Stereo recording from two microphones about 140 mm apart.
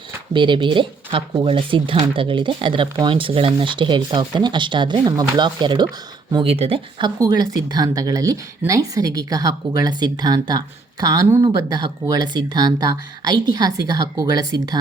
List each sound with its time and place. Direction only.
0.3 s speech: 35° right (ahead or behind)
7.2 s speech: 30° right (ahead or behind)